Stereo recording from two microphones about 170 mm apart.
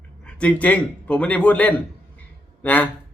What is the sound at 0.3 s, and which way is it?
Speech, 5° left (ahead or behind).